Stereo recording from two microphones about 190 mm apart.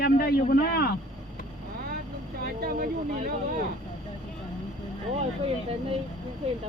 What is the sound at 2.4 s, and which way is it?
Vehicle, 50° right (ahead or behind).